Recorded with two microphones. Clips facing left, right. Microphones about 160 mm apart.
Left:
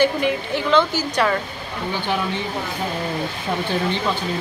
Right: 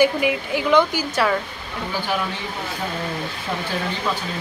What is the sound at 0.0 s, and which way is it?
Speech, 10° right (ahead or behind).